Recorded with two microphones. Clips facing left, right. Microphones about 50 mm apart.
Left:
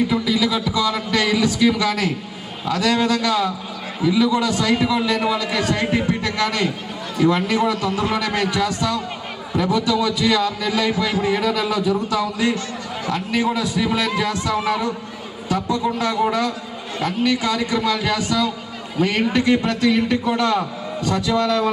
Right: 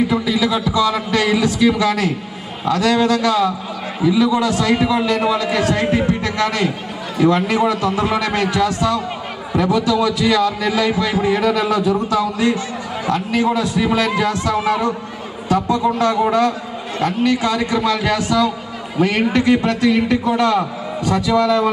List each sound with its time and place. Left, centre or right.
0.1 s a man's voice: centre
8.1 s a man's voice: centre
17.4 s a man's voice: centre